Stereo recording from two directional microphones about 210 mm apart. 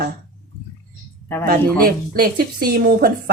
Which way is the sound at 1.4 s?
45° right (ahead or behind).